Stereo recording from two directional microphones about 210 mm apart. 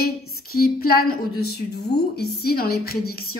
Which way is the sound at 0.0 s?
45° left (ahead or behind).